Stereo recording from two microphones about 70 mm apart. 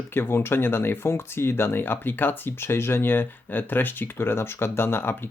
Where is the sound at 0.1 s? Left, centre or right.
Left.